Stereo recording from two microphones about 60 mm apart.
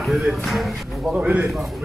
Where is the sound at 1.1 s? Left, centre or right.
Centre.